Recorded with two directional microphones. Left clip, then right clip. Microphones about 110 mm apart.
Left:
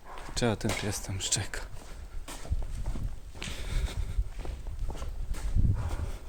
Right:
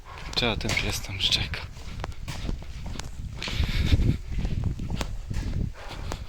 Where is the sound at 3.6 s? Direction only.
20° left (ahead or behind).